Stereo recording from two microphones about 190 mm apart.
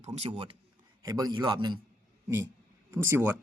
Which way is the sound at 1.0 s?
20° right (ahead or behind).